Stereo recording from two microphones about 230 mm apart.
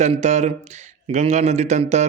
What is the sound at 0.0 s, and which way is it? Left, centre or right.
Speech, right.